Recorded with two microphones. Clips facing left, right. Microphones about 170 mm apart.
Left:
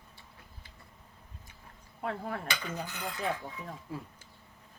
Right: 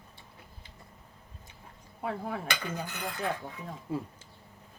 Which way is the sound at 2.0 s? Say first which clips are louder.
Right 1 dB; 5° right (ahead or behind).